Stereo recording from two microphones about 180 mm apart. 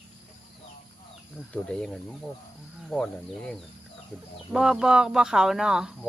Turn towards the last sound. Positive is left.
turn(degrees=-5)  # may be behind; listen again after turning